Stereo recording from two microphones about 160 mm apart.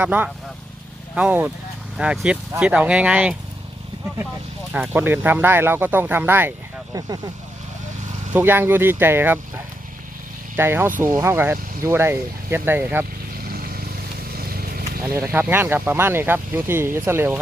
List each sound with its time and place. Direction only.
0.0 s speech: 10° right (ahead or behind)
4.7 s speech: 10° right (ahead or behind)
8.3 s speech: 15° right (ahead or behind)
10.6 s speech: 15° right (ahead or behind)
13.4 s vehicle: 65° right (ahead or behind)
15.1 s speech: 15° right (ahead or behind)